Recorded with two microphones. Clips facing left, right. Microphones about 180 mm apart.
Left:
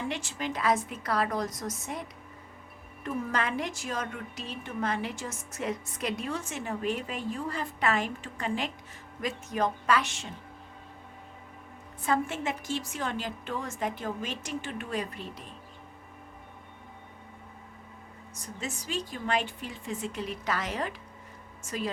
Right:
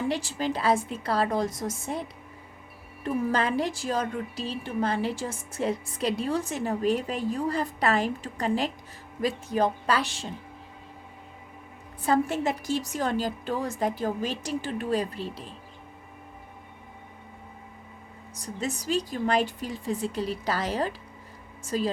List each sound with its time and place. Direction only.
0.1 s a woman's voice: 35° right (ahead or behind)
3.3 s a woman's voice: 30° right (ahead or behind)
12.0 s a woman's voice: 35° right (ahead or behind)
18.3 s a woman's voice: 35° right (ahead or behind)